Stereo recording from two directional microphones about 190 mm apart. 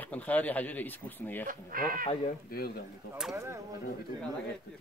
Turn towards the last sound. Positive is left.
turn(degrees=-15)  # may be behind; listen again after turning